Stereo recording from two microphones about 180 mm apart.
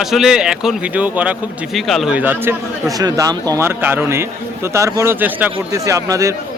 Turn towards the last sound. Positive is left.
turn(degrees=-15)  # may be behind; listen again after turning